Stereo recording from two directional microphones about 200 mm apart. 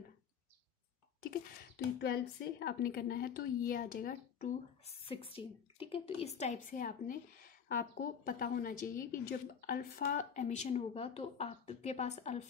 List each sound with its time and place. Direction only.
2.0 s a woman's voice: 55° left (ahead or behind)
4.8 s a woman's voice: 30° left (ahead or behind)